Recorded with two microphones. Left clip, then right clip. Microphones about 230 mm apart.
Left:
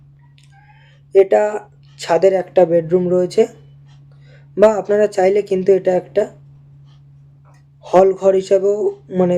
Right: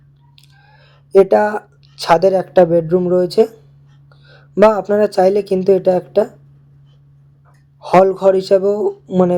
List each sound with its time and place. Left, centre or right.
1.1 s speech: centre
4.5 s speech: centre
7.8 s speech: centre